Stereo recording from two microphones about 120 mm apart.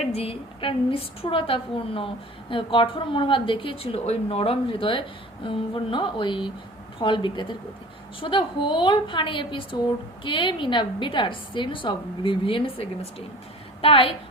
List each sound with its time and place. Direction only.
0.1 s a woman's voice: 55° left (ahead or behind)